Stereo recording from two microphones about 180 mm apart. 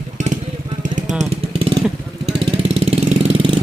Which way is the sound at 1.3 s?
30° right (ahead or behind).